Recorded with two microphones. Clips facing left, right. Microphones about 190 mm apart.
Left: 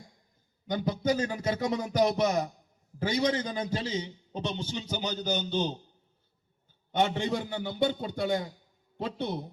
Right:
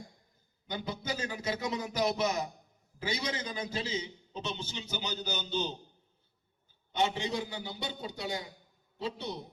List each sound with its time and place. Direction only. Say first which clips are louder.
0.7 s a man's voice: left 9 dB; 45° left (ahead or behind)
6.9 s a man's voice: left 4 dB; 55° left (ahead or behind)